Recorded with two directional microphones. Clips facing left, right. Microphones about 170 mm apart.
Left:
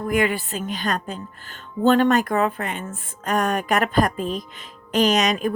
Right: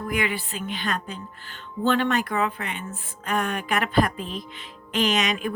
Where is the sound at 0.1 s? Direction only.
45° left (ahead or behind).